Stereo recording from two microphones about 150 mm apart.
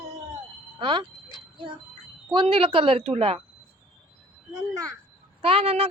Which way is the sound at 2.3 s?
35° right (ahead or behind).